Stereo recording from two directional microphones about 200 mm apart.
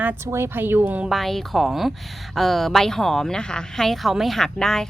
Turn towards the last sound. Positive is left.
turn(degrees=5)  # may be behind; listen again after turning